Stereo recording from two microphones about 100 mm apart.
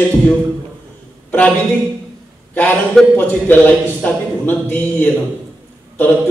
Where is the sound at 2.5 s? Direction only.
15° left (ahead or behind).